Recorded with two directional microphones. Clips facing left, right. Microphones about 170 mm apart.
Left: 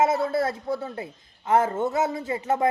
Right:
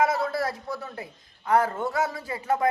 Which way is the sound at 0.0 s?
25° left (ahead or behind).